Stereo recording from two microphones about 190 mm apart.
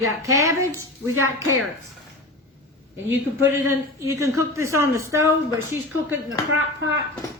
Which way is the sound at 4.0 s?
15° right (ahead or behind).